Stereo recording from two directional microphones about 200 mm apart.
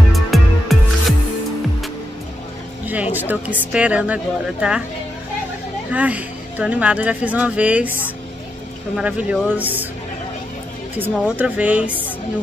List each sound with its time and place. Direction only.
0.1 s music: centre (ahead or behind)
2.9 s speech: 10° right (ahead or behind)
5.9 s speech: 5° right (ahead or behind)
8.9 s speech: 5° right (ahead or behind)
11.0 s speech: 5° right (ahead or behind)